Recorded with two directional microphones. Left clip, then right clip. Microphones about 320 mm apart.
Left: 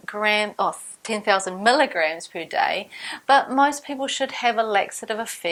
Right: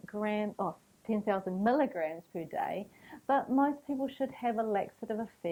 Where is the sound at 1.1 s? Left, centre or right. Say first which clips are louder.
Left 11 dB; centre.